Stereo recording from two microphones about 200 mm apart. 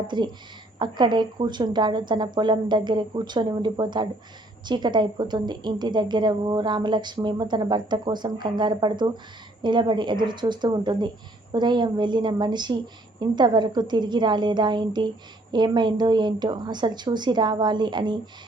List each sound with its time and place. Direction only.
0.1 s a woman's voice: 20° right (ahead or behind)